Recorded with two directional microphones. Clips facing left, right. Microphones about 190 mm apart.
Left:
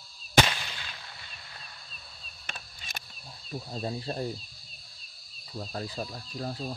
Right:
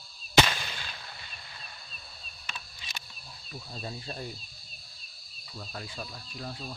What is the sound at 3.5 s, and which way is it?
Speech, 35° left (ahead or behind).